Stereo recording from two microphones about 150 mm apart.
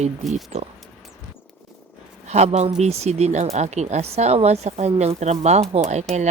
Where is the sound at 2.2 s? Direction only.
45° right (ahead or behind).